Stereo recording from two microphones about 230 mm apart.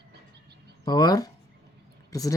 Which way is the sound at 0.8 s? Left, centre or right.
Centre.